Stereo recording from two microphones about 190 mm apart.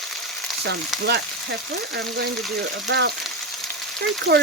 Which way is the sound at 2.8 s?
65° right (ahead or behind).